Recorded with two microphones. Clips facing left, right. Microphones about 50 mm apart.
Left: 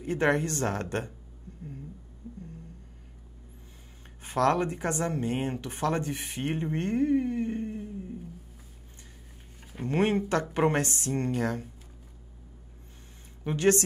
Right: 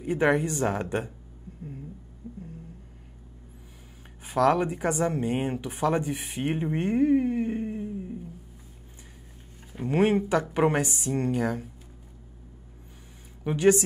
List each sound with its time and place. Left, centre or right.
0.0 s speech: centre
2.2 s a sound: centre
4.3 s speech: centre
9.8 s speech: centre
13.5 s speech: centre